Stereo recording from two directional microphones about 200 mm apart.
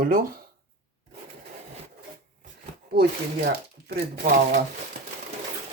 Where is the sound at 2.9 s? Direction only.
50° right (ahead or behind).